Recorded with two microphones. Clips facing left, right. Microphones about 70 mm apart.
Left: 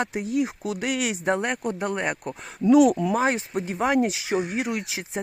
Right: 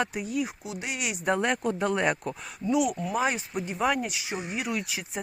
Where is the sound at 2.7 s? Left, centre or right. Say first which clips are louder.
Left 8 dB; left.